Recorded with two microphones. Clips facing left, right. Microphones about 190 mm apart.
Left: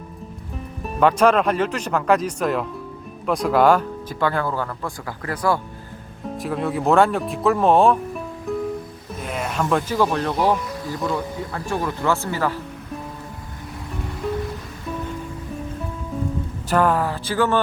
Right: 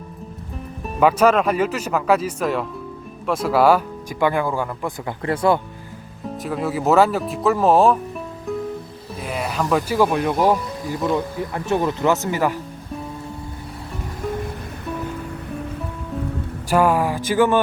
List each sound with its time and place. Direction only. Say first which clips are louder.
0.9 s speech: right 1 dB; 5° right (ahead or behind); by 5.5 s 25° right (ahead or behind)
6.3 s speech: even; centre (ahead or behind)
8.5 s music: even; centre (ahead or behind)
9.2 s speech: right 1 dB; 5° right (ahead or behind)
16.6 s speech: right 2 dB; 10° right (ahead or behind)